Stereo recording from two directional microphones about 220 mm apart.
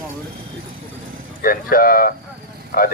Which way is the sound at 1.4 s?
40° left (ahead or behind).